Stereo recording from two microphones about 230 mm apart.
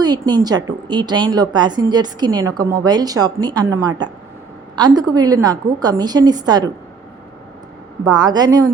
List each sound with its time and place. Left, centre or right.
0.0 s a woman's voice: centre
8.0 s a woman's voice: centre